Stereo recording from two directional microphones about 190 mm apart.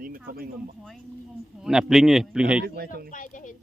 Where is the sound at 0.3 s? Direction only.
50° right (ahead or behind).